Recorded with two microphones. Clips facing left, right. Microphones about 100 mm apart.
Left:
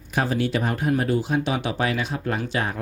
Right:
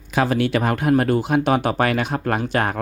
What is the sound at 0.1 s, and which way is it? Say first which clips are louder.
Speech: right 4 dB; 85° right.